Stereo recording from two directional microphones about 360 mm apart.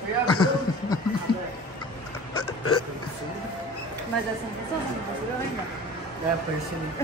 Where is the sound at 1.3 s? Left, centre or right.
Centre.